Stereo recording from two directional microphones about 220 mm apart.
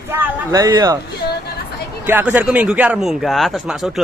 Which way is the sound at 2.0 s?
10° right (ahead or behind).